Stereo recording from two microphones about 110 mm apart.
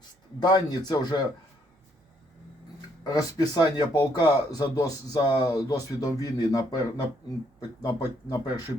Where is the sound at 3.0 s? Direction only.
35° left (ahead or behind).